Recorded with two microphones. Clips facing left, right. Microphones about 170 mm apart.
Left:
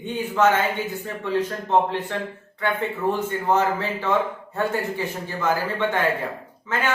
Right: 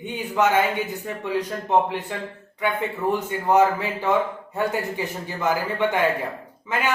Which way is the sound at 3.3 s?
15° right (ahead or behind).